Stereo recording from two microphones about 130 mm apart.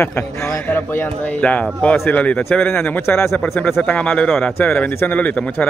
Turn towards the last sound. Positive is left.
turn(degrees=10)  # may be behind; listen again after turning